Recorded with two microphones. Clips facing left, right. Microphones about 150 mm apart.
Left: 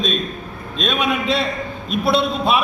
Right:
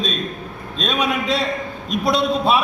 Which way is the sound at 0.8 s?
35° right (ahead or behind).